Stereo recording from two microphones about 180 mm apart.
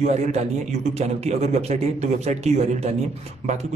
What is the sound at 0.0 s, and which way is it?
Speech, 40° right (ahead or behind).